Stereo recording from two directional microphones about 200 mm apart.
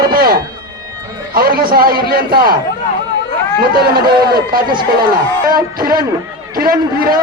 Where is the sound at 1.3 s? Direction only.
50° right (ahead or behind).